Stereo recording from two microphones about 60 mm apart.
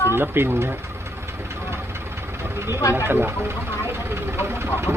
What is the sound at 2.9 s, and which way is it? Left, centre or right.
Speech, right.